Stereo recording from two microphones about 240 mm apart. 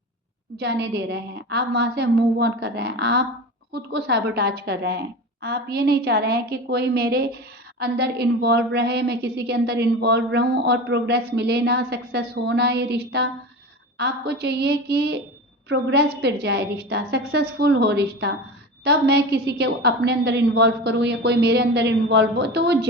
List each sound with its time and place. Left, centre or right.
0.6 s a woman's voice: right